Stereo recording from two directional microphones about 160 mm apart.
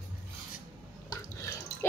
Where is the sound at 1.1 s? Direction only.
20° left (ahead or behind).